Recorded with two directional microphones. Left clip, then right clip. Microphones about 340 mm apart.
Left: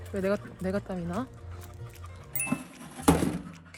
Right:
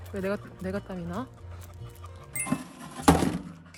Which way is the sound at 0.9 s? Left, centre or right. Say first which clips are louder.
Left 2 dB; left.